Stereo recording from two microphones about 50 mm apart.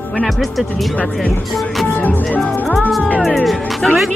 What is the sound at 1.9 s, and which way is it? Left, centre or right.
Music, left.